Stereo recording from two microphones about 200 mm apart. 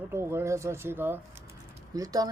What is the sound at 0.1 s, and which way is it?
Speech, 10° right (ahead or behind).